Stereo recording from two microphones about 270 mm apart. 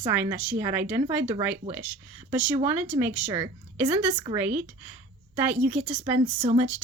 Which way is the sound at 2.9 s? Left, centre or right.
Centre.